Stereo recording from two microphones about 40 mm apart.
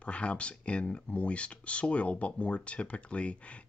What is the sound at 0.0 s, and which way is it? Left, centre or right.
Speech, left.